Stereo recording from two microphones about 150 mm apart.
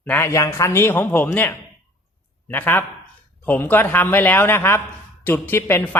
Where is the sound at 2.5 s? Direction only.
15° left (ahead or behind).